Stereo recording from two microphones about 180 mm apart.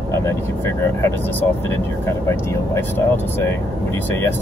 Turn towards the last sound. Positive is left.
turn(degrees=10)  # may be behind; listen again after turning